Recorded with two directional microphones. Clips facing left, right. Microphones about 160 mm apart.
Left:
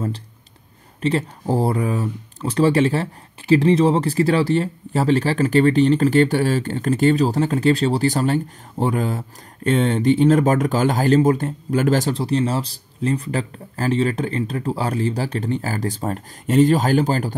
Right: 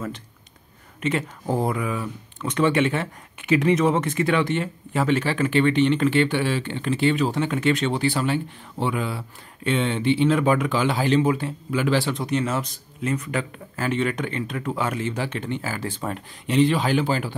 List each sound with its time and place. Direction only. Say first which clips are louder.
1.0 s speech: left 4 dB; 35° left (ahead or behind)